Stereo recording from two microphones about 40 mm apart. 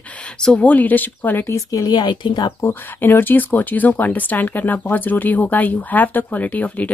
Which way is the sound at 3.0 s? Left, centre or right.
Left.